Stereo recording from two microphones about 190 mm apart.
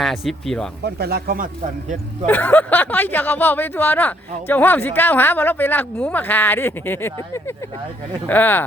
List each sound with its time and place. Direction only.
0.0 s speech: centre (ahead or behind)
0.9 s speech: 55° right (ahead or behind)
2.2 s speech: 10° left (ahead or behind)